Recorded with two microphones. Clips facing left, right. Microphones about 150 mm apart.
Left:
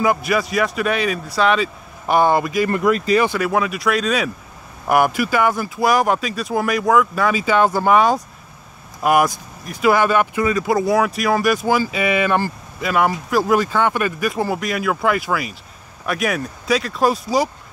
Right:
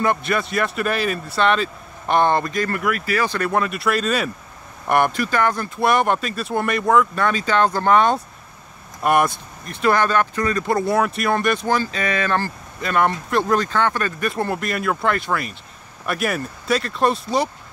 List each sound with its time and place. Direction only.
0.0 s speech: 5° left (ahead or behind)
2.7 s speech: 20° left (ahead or behind)
3.3 s speech: 5° left (ahead or behind)